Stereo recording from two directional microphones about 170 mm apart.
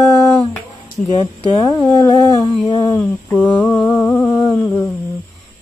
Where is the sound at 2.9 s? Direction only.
10° left (ahead or behind).